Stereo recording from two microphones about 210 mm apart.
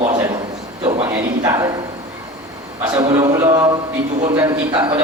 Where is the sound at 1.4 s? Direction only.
15° right (ahead or behind).